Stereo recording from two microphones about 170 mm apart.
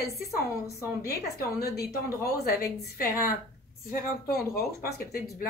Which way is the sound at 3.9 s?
60° left (ahead or behind).